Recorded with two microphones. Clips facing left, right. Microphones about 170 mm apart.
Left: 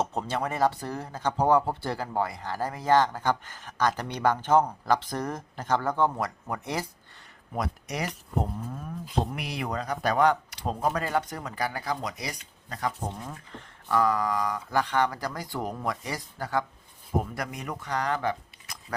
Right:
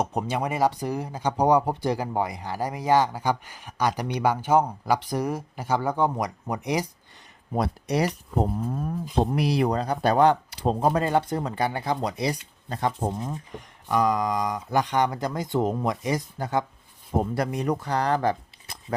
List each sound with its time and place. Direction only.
0.0 s speech: 15° right (ahead or behind)
7.5 s speech: 30° right (ahead or behind)
9.3 s speech: 35° right (ahead or behind)
13.1 s speech: 20° right (ahead or behind)
17.3 s speech: 30° right (ahead or behind)